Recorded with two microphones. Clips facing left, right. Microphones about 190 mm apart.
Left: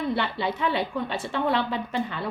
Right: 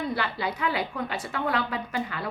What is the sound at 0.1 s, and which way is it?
A woman's voice, 25° left (ahead or behind).